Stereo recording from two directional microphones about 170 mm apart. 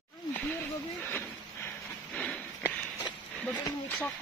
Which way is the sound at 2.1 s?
10° left (ahead or behind).